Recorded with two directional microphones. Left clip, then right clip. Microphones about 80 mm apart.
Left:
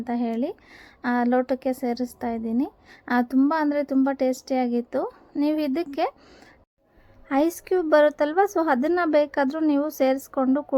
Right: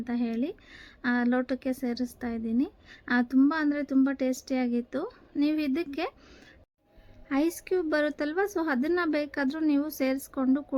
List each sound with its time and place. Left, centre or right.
0.0 s a woman's voice: left
7.3 s a woman's voice: left
10.3 s a woman's voice: centre